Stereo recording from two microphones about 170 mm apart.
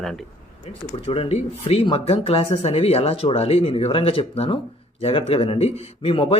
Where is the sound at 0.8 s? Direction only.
35° left (ahead or behind).